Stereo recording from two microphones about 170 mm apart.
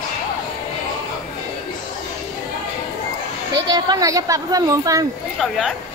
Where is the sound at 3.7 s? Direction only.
25° right (ahead or behind).